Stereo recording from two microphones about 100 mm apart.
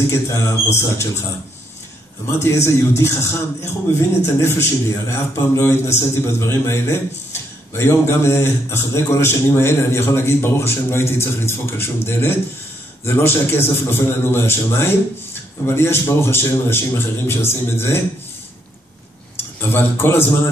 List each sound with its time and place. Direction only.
0.1 s a man's voice: 30° left (ahead or behind)
2.2 s a man's voice: 25° left (ahead or behind)
19.7 s a man's voice: 25° left (ahead or behind)